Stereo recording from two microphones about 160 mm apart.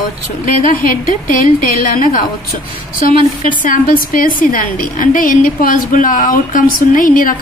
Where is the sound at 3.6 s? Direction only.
60° left (ahead or behind).